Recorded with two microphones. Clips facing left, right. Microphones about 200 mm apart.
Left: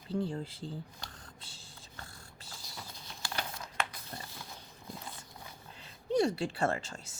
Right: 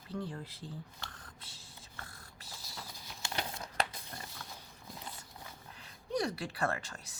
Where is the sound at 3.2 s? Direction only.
25° right (ahead or behind).